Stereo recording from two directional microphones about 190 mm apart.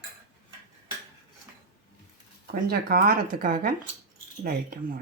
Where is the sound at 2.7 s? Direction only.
50° right (ahead or behind).